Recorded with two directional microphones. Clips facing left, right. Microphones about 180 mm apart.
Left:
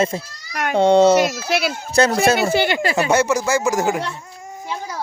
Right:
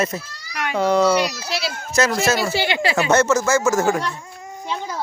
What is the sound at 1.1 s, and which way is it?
Speech, 50° left (ahead or behind).